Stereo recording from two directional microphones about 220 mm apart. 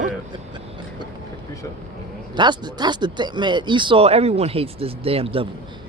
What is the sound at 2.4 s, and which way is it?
A man's voice, 20° right (ahead or behind).